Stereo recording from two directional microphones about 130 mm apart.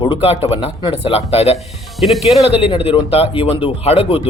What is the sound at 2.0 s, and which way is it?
Speech, centre (ahead or behind).